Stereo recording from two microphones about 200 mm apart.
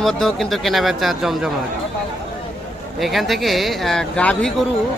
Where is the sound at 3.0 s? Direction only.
Centre (ahead or behind).